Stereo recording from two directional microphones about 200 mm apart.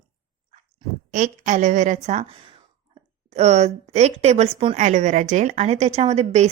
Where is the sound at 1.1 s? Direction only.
35° right (ahead or behind).